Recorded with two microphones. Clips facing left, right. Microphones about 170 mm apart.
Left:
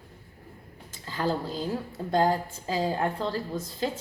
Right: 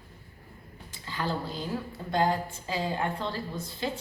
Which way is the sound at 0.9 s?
40° left (ahead or behind).